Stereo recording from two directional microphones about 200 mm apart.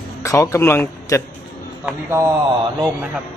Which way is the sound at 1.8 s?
15° right (ahead or behind).